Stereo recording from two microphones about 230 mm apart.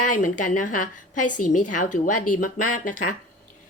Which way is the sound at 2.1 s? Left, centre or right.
Left.